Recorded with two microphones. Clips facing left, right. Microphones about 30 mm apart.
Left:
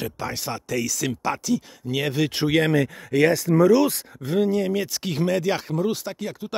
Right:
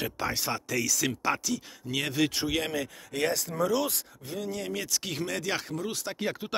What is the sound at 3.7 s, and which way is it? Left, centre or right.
Speech, left.